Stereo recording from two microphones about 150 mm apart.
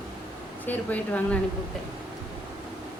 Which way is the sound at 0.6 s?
10° left (ahead or behind).